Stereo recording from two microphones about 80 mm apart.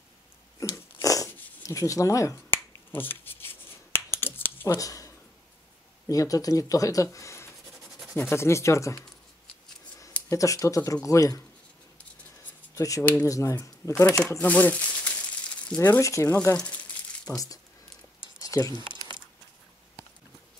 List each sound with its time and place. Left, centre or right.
0.6 s a sound: left
1.6 s finger snapping: left
4.7 s speech: left
10.3 s speech: left
12.7 s speech: left
13.0 s speech: left
13.3 s speech: left
14.0 s speech: centre
14.4 s a sound: centre
16.0 s speech: left
16.5 s crumpling: centre
18.4 s a sound: left